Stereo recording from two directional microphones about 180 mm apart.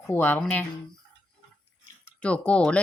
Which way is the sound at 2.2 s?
5° left (ahead or behind).